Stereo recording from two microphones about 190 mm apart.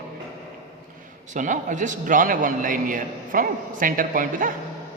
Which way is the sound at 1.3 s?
40° right (ahead or behind).